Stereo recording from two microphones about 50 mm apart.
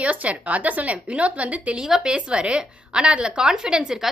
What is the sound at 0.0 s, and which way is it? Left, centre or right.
Speech, right.